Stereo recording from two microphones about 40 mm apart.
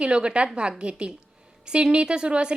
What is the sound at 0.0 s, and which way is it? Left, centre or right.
A woman's voice, right.